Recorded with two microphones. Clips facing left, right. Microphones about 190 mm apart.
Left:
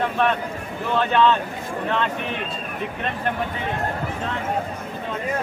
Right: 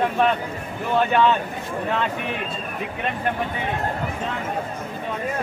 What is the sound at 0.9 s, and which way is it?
Speech, 15° right (ahead or behind).